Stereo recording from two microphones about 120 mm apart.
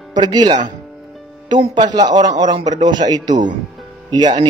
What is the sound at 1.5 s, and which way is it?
Speech, 40° right (ahead or behind).